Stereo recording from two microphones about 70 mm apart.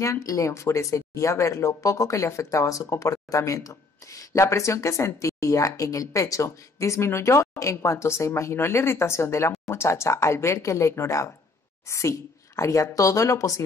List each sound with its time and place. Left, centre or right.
0.0 s speech: left